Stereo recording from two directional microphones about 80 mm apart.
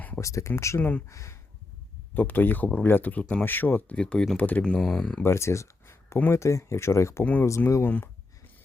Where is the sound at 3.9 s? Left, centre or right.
Centre.